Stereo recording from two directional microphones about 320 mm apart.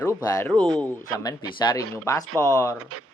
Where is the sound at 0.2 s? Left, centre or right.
Centre.